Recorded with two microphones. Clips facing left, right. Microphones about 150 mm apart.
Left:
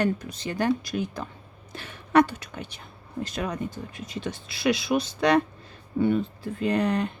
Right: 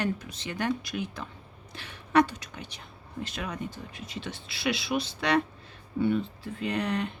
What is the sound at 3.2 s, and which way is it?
Speech, 40° left (ahead or behind).